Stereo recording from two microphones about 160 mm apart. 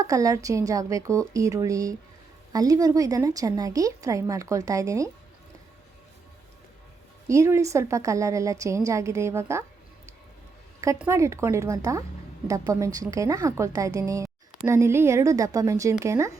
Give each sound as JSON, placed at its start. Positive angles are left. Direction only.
{"t": 0.0, "sound": "a woman's voice", "side_deg": -20}
{"t": 7.3, "sound": "a woman's voice", "side_deg": -20}
{"t": 11.0, "sound": "a woman's voice", "side_deg": -15}